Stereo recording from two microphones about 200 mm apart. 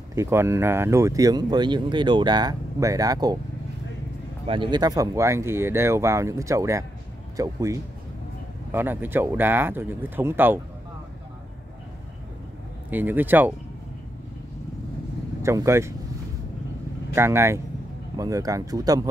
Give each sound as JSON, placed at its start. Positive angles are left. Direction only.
{"t": 0.1, "sound": "speech", "side_deg": -15}
{"t": 4.5, "sound": "speech", "side_deg": -25}
{"t": 12.9, "sound": "speech", "side_deg": -10}
{"t": 15.4, "sound": "speech", "side_deg": -15}
{"t": 17.1, "sound": "speech", "side_deg": -10}